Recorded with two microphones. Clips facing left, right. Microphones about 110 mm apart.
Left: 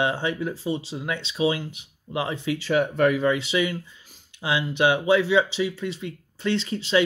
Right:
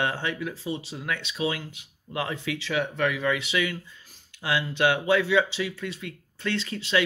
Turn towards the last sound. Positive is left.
turn(degrees=25)  # may be behind; listen again after turning